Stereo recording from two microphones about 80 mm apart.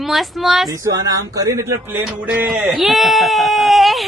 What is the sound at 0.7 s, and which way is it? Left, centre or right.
Speech, right.